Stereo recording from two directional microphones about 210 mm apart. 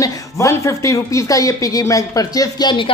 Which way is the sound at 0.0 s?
15° left (ahead or behind).